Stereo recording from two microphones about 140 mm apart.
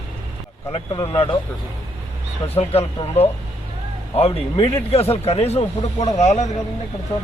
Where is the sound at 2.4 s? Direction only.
45° left (ahead or behind).